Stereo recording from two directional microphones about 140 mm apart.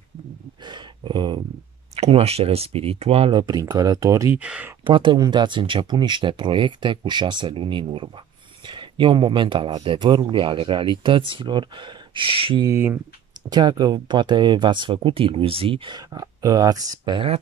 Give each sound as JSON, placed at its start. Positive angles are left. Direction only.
{"t": 0.7, "sound": "a sound", "side_deg": -35}
{"t": 2.0, "sound": "speech", "side_deg": -45}
{"t": 3.3, "sound": "speech", "side_deg": -25}
{"t": 4.4, "sound": "speech", "side_deg": -10}
{"t": 4.8, "sound": "speech", "side_deg": -35}
{"t": 12.6, "sound": "speech", "side_deg": -15}
{"t": 13.5, "sound": "speech", "side_deg": -30}
{"t": 16.1, "sound": "speech", "side_deg": -25}